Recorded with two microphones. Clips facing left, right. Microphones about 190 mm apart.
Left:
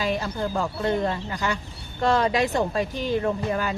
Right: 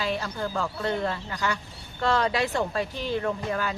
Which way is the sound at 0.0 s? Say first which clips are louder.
Left 3 dB; 15° left (ahead or behind).